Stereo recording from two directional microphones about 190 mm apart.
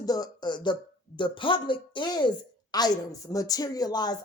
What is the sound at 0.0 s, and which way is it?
A woman's voice, 20° left (ahead or behind).